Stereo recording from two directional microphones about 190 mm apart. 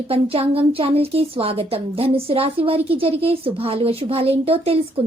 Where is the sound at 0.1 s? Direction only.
30° right (ahead or behind).